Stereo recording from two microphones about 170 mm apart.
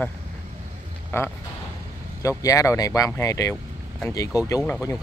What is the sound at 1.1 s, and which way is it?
Speech, 15° left (ahead or behind).